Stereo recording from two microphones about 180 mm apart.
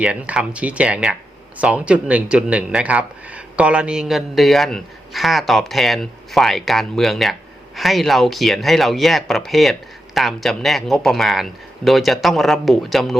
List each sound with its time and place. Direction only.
0.0 s speech: 5° right (ahead or behind)